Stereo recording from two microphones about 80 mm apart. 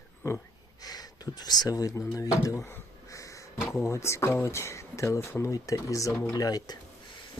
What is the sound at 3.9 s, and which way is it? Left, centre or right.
Speech, left.